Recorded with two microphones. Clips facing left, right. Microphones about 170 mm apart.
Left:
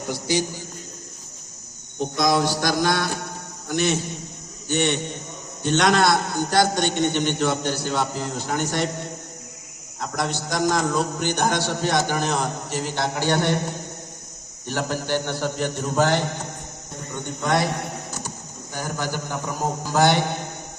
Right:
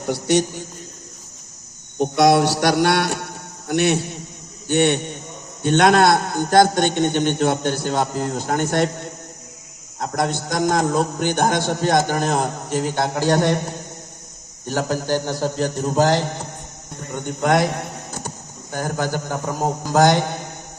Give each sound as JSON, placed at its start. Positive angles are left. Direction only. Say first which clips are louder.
{"t": 0.1, "sound": "a sound", "louder": "right 6 dB", "side_deg": -65}
{"t": 2.0, "sound": "a sound", "louder": "right 6 dB", "side_deg": -70}
{"t": 3.7, "sound": "a man's voice", "louder": "right 4 dB", "side_deg": -65}
{"t": 10.0, "sound": "a man's voice", "louder": "right 4 dB", "side_deg": -50}
{"t": 14.7, "sound": "a man's voice", "louder": "right 4 dB", "side_deg": -40}
{"t": 17.4, "sound": "a man's voice", "louder": "right 5 dB", "side_deg": -50}
{"t": 18.7, "sound": "a man's voice", "louder": "right 5 dB", "side_deg": -50}